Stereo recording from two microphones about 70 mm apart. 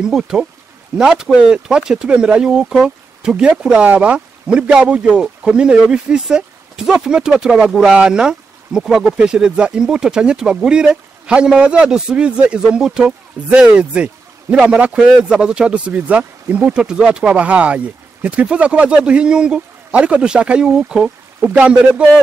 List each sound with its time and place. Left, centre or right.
0.0 s speech: centre
13.5 s speech: centre